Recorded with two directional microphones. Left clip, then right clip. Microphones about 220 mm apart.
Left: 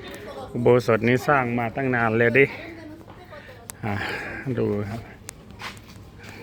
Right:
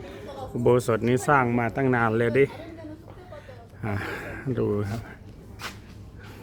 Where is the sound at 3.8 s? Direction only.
5° right (ahead or behind).